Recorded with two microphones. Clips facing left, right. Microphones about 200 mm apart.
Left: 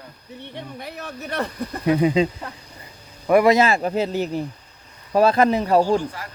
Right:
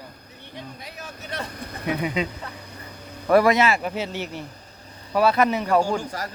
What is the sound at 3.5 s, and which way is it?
Speech, 35° left (ahead or behind).